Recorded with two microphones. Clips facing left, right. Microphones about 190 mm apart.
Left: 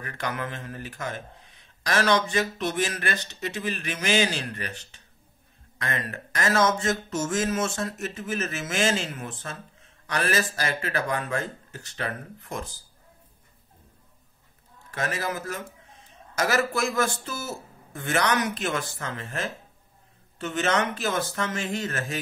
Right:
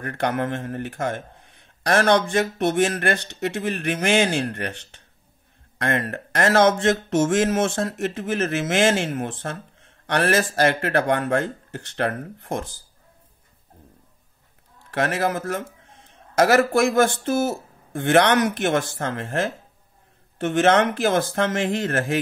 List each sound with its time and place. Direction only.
0.0 s a man's voice: 60° right (ahead or behind)
14.9 s a man's voice: 65° right (ahead or behind)
20.6 s a man's voice: 55° right (ahead or behind)